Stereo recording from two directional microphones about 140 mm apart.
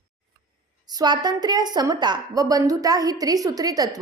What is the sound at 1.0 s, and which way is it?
A woman's voice, 30° right (ahead or behind).